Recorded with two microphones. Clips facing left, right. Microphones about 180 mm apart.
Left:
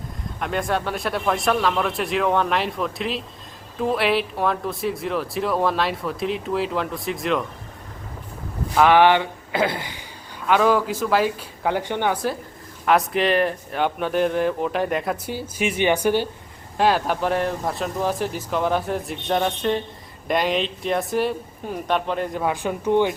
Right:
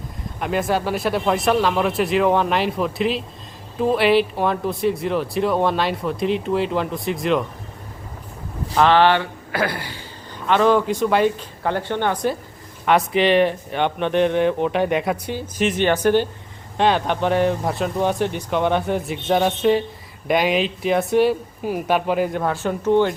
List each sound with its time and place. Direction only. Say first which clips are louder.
0.3 s speech: right 3 dB; 5° right (ahead or behind)
8.7 s speech: even; 10° left (ahead or behind)
10.4 s speech: right 2 dB; 5° left (ahead or behind)
22.4 s speech: right 2 dB; 10° left (ahead or behind)